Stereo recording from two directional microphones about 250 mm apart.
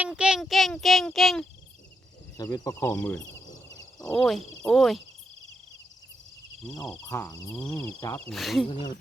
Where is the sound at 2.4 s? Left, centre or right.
Centre.